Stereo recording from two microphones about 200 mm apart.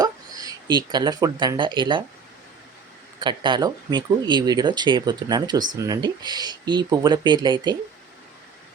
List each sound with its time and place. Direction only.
0.0 s speech: 20° right (ahead or behind)
3.2 s speech: 25° right (ahead or behind)